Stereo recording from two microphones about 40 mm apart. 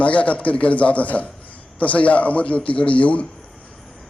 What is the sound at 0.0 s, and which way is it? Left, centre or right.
A man's voice, left.